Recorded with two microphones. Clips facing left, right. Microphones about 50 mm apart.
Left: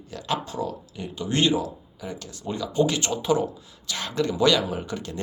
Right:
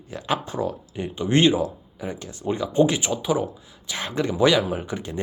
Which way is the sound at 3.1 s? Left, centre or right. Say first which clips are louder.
Even; centre.